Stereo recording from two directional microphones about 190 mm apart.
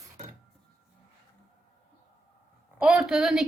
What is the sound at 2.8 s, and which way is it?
Speech, 5° right (ahead or behind).